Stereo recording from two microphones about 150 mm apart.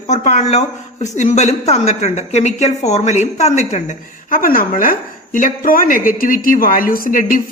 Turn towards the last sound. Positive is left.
turn(degrees=65)  # may be behind; listen again after turning